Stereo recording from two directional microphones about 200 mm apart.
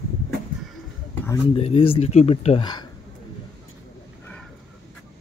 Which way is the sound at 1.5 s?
30° left (ahead or behind).